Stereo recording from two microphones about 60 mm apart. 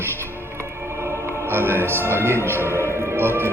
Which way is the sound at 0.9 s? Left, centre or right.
Right.